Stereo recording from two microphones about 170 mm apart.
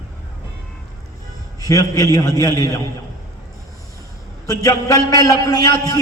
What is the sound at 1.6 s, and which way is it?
A man's voice, 20° left (ahead or behind).